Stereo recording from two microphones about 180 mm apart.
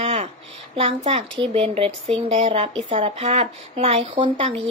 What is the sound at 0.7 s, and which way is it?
Speech, 30° right (ahead or behind).